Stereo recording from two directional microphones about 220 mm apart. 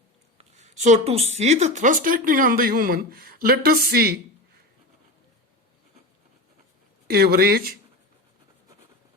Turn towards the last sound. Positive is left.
turn(degrees=-40)  # may be behind; listen again after turning